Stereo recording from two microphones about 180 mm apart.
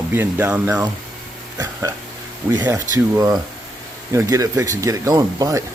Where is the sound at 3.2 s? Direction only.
20° right (ahead or behind).